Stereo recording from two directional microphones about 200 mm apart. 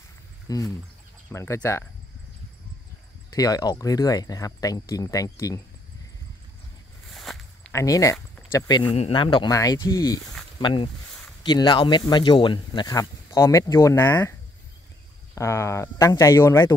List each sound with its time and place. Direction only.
0.5 s speech: 15° left (ahead or behind)
3.3 s speech: 20° left (ahead or behind)
7.2 s a sound: centre (ahead or behind)
7.7 s speech: 15° left (ahead or behind)
15.3 s speech: 15° left (ahead or behind)